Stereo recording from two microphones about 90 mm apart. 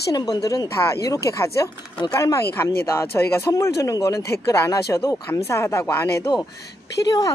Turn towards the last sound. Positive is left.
turn(degrees=45)  # may be behind; listen again after turning